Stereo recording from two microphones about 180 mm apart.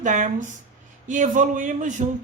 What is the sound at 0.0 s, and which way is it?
Speech, 45° right (ahead or behind).